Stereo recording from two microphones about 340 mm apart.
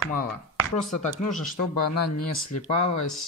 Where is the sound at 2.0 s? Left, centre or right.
Left.